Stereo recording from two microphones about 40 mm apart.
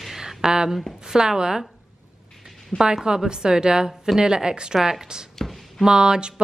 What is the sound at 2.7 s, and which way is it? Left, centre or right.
Speech, left.